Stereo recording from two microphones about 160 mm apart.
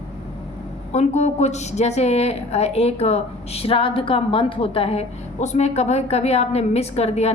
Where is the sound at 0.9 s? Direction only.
45° left (ahead or behind).